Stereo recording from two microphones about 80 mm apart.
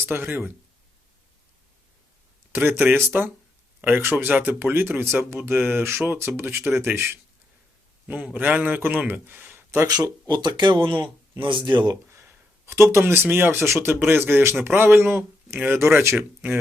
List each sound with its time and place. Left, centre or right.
0.0 s speech: right
2.5 s speech: right
9.8 s speech: right
12.0 s speech: right